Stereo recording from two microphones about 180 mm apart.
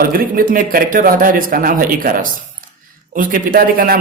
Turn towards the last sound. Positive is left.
turn(degrees=-50)  # may be behind; listen again after turning